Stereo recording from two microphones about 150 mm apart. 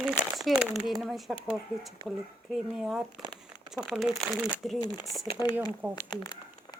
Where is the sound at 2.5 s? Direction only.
Centre (ahead or behind).